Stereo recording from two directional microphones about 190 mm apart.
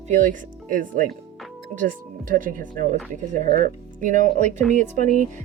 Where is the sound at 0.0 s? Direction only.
40° right (ahead or behind).